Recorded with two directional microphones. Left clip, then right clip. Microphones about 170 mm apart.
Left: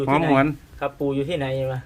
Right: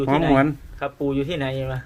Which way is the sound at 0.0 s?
5° right (ahead or behind).